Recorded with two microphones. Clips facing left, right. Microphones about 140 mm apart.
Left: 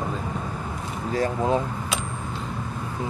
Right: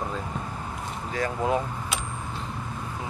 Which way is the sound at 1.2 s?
25° left (ahead or behind).